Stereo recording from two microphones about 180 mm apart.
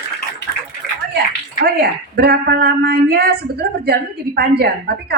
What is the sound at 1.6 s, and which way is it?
Speech, 60° right (ahead or behind).